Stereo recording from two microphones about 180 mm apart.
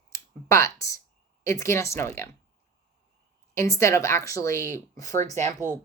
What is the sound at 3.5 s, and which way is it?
Speech, 15° left (ahead or behind).